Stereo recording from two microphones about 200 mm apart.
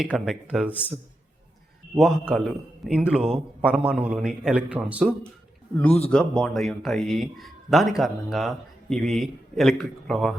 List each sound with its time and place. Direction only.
0.0 s speech: centre (ahead or behind)
2.0 s speech: centre (ahead or behind)
5.7 s a man's voice: 5° left (ahead or behind)